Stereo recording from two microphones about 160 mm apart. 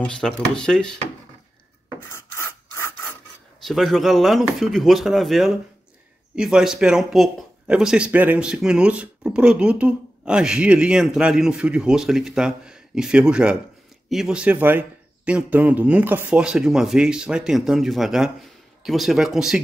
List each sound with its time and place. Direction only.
0.0 s speech: 5° left (ahead or behind)
2.0 s rub: 15° left (ahead or behind)
3.6 s speech: centre (ahead or behind)